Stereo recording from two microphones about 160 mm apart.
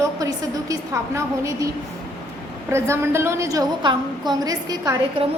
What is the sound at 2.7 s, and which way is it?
A woman's voice, 15° right (ahead or behind).